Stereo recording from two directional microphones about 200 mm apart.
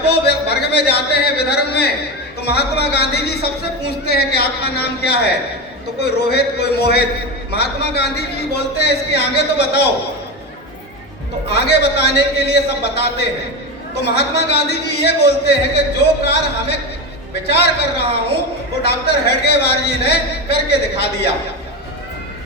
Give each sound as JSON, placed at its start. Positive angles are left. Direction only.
{"t": 0.1, "sound": "a man's voice", "side_deg": 55}
{"t": 11.4, "sound": "a man's voice", "side_deg": 55}